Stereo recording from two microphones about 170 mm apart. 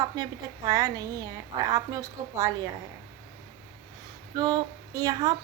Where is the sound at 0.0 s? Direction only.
20° right (ahead or behind).